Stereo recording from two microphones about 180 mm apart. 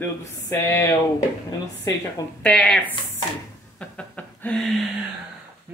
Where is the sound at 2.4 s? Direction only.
5° left (ahead or behind).